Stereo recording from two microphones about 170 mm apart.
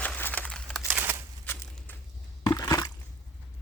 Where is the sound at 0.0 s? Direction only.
10° left (ahead or behind).